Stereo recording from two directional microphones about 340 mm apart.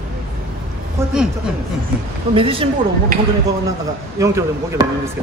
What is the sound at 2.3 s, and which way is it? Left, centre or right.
Speech, centre.